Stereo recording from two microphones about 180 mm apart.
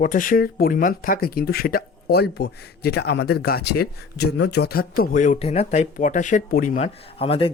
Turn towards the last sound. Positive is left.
turn(degrees=30)  # may be behind; listen again after turning